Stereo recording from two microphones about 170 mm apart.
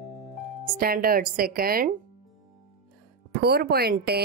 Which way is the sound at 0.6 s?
60° right (ahead or behind).